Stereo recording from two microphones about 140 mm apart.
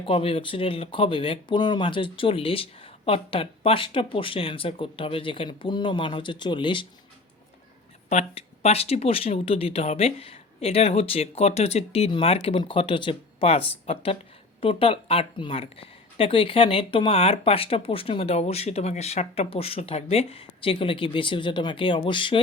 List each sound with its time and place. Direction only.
0.0 s speech: 40° left (ahead or behind)
8.1 s speech: 50° left (ahead or behind)